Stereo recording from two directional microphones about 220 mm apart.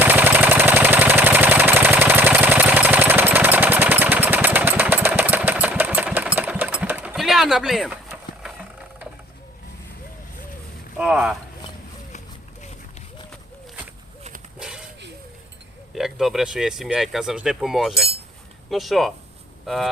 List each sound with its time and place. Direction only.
0.0 s engine: 10° right (ahead or behind)
10.9 s speech: 5° right (ahead or behind)
14.6 s a sound: 5° right (ahead or behind)
16.0 s speech: centre (ahead or behind)